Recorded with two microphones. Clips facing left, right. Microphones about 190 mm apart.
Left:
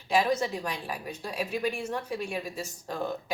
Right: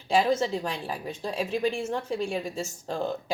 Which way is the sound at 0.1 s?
30° right (ahead or behind).